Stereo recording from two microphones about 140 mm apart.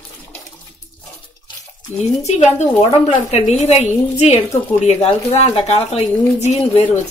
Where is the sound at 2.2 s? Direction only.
50° left (ahead or behind).